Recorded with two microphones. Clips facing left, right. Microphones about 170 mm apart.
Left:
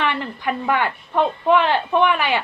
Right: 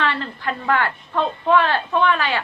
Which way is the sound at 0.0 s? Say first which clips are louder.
Left 1 dB; 15° left (ahead or behind).